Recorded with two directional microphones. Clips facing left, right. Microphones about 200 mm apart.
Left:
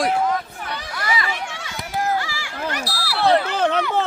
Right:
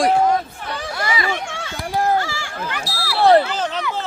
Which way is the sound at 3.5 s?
60° left (ahead or behind).